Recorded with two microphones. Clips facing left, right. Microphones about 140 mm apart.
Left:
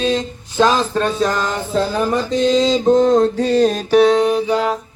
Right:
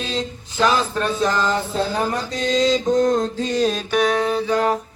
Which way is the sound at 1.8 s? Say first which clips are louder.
Left 4 dB; 90° left.